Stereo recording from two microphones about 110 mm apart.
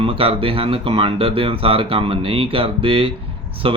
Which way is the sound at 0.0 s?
55° right (ahead or behind).